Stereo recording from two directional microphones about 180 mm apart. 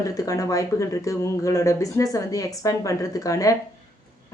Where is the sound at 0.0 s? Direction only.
20° left (ahead or behind).